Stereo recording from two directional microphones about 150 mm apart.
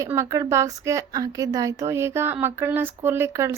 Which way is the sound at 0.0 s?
20° right (ahead or behind).